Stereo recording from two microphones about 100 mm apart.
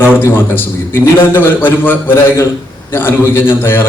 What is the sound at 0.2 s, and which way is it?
A man's voice, 20° left (ahead or behind).